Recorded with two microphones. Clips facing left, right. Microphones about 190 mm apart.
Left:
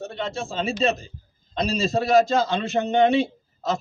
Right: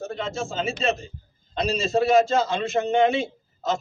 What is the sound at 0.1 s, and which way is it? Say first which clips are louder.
A man's voice: even; 35° left (ahead or behind).